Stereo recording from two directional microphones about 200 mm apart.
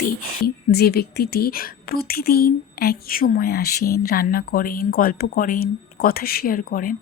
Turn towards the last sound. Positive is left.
turn(degrees=45)  # may be behind; listen again after turning